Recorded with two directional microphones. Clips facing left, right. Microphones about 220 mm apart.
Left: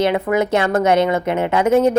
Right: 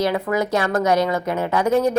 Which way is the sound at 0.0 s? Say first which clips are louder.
Left 4 dB; 25° left (ahead or behind).